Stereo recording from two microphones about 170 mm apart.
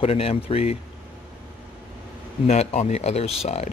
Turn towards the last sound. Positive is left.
turn(degrees=40)  # may be behind; listen again after turning